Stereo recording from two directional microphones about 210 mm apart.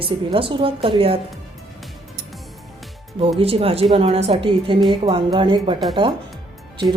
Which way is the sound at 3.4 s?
25° right (ahead or behind).